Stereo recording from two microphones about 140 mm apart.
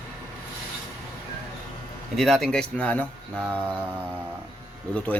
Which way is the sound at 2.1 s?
Centre (ahead or behind).